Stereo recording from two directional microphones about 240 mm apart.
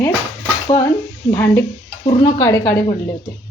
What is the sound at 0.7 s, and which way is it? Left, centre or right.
Speech, centre.